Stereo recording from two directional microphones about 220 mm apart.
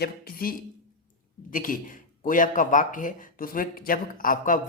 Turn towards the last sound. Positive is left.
turn(degrees=40)  # may be behind; listen again after turning